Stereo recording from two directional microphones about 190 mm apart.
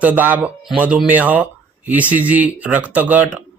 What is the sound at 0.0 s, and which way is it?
Speech, 10° right (ahead or behind).